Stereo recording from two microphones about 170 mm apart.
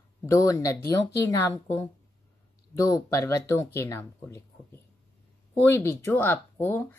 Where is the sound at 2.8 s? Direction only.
20° left (ahead or behind).